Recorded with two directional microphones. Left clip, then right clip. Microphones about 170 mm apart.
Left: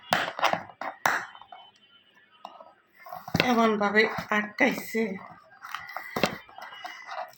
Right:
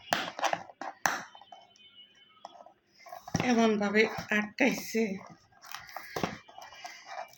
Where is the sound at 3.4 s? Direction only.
5° left (ahead or behind).